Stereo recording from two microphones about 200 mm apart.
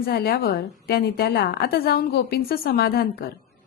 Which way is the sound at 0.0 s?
50° left (ahead or behind).